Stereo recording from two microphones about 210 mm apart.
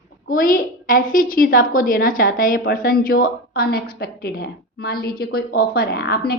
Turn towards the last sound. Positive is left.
turn(degrees=50)  # may be behind; listen again after turning